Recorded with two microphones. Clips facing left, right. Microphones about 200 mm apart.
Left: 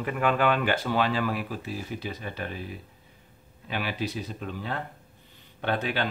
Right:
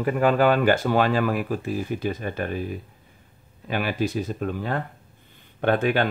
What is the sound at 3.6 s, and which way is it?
Speech, 50° right (ahead or behind).